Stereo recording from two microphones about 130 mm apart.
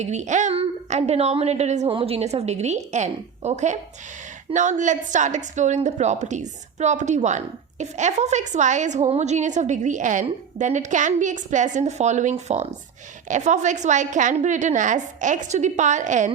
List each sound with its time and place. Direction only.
0.0 s a woman's voice: 65° right (ahead or behind)
1.9 s a woman's voice: 45° right (ahead or behind); by 16.3 s 70° right (ahead or behind)